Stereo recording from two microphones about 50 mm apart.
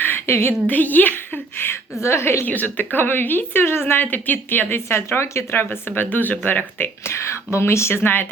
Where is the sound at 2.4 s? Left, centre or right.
Left.